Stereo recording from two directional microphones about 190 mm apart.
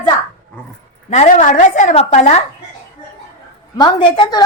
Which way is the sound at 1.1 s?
40° left (ahead or behind).